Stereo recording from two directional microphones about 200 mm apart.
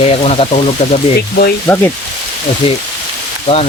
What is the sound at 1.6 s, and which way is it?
Speech, 10° left (ahead or behind).